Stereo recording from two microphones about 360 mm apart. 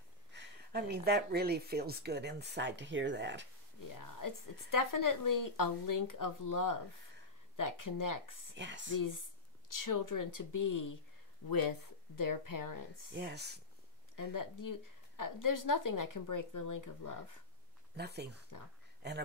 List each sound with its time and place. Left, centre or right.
0.3 s speech: right
3.9 s a woman's voice: left
8.5 s speech: right
8.9 s a woman's voice: left
11.4 s a woman's voice: left
13.1 s speech: right
14.1 s a woman's voice: left
17.9 s speech: right